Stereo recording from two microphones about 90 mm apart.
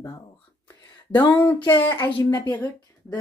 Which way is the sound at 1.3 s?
20° left (ahead or behind).